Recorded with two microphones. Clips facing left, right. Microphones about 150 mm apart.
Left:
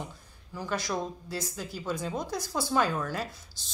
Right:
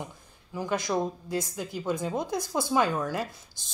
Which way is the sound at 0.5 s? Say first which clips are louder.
Right 4 dB; 15° right (ahead or behind).